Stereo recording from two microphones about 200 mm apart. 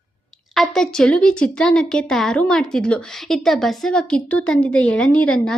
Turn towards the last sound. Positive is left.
turn(degrees=5)  # may be behind; listen again after turning